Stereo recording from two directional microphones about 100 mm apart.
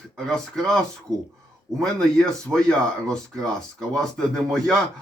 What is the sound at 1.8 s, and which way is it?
A man's voice, 5° left (ahead or behind).